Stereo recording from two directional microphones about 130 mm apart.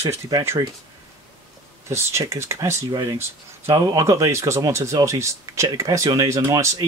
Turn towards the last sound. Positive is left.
turn(degrees=-25)  # may be behind; listen again after turning